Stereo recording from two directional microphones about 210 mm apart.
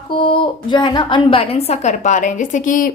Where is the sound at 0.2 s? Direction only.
25° left (ahead or behind).